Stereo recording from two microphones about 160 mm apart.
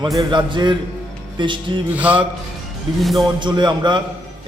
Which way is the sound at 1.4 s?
30° right (ahead or behind).